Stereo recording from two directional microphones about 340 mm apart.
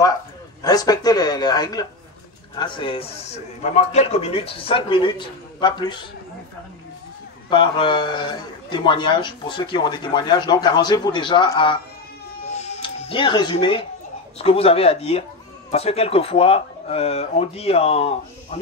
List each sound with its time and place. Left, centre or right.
0.6 s a man's voice: centre
7.4 s a man's voice: centre
12.4 s music: centre
14.4 s a man's voice: centre